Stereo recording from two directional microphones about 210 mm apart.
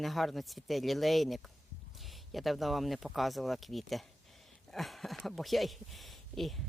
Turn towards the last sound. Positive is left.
turn(degrees=0)  # may be behind; listen again after turning